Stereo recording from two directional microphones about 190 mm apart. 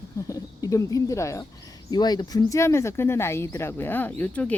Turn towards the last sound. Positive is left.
turn(degrees=5)  # may be behind; listen again after turning